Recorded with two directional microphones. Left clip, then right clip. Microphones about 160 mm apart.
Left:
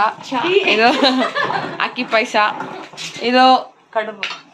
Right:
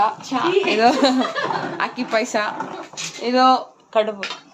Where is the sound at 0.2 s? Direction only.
90° right.